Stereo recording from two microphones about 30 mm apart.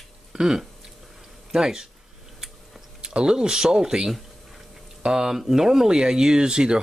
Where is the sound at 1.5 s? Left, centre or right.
Right.